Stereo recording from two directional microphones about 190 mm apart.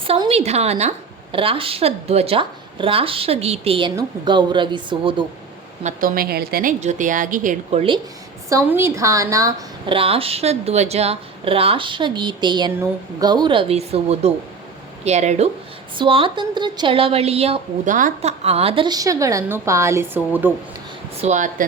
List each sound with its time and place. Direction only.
0.0 s a woman's voice: 30° right (ahead or behind)
5.8 s a woman's voice: 45° right (ahead or behind)
8.4 s a woman's voice: 15° right (ahead or behind)
21.2 s speech: 40° right (ahead or behind)